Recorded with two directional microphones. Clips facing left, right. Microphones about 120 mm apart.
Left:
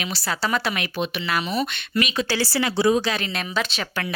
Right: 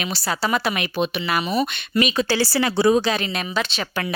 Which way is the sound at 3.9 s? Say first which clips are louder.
Right 3 dB; 20° right (ahead or behind).